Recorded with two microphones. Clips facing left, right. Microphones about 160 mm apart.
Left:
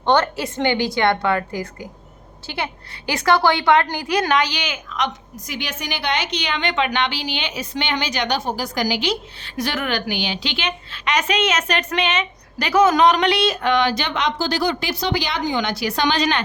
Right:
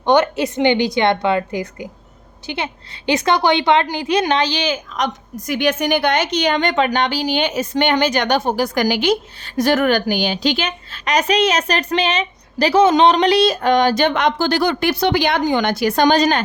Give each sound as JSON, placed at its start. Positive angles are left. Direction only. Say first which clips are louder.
{"t": 0.0, "sound": "a woman's voice", "louder": "right 4 dB", "side_deg": -15}